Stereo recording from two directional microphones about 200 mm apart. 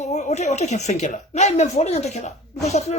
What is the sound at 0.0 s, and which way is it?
Speech, 35° left (ahead or behind).